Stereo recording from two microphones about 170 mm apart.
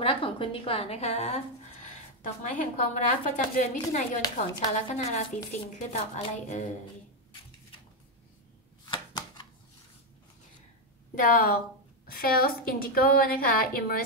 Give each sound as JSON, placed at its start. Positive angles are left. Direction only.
{"t": 0.0, "sound": "a woman's voice", "side_deg": 30}
{"t": 8.8, "sound": "chopping", "side_deg": 25}
{"t": 11.1, "sound": "a woman's voice", "side_deg": 55}